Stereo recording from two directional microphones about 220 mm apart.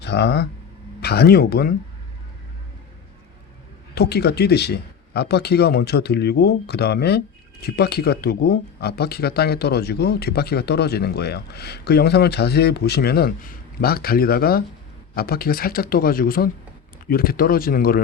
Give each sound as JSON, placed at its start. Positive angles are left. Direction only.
{"t": 0.0, "sound": "speech", "side_deg": 50}
{"t": 3.9, "sound": "speech", "side_deg": 45}